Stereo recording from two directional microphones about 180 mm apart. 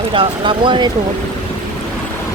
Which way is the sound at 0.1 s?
30° right (ahead or behind).